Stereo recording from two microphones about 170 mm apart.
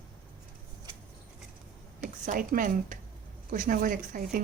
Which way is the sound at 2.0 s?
50° right (ahead or behind).